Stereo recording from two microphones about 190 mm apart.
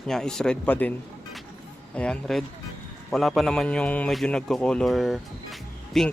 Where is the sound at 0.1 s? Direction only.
5° left (ahead or behind).